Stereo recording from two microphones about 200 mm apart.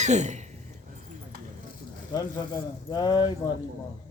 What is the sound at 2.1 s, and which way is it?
Speech, 20° left (ahead or behind).